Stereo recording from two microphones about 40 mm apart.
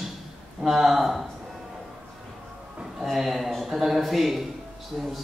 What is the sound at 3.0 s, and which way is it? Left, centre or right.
Speech, centre.